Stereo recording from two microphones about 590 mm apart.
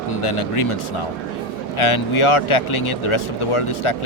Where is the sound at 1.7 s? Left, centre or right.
Left.